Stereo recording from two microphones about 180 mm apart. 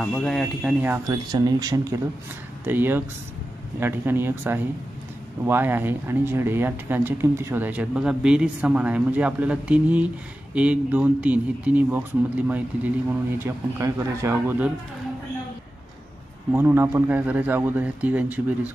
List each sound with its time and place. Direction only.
0.0 s speech: 5° left (ahead or behind); by 14.7 s 15° right (ahead or behind)
16.5 s speech: 15° right (ahead or behind)